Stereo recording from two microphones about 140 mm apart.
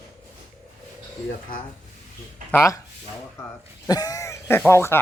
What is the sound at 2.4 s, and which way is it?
Speech, 20° left (ahead or behind).